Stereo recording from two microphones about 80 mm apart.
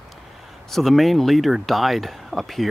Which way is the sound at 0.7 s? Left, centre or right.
Centre.